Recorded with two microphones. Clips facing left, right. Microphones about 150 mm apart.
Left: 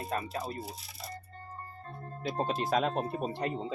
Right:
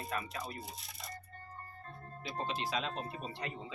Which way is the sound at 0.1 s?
35° left (ahead or behind).